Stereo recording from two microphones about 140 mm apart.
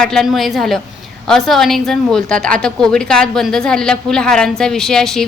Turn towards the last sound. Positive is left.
turn(degrees=5)  # may be behind; listen again after turning